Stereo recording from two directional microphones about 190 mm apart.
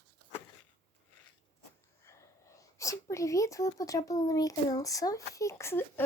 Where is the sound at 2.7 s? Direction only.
15° left (ahead or behind).